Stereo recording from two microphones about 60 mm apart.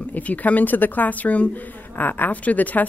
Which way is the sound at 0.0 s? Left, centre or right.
Left.